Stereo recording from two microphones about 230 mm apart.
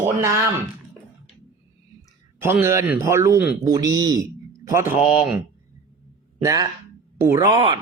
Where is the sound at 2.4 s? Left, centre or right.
Centre.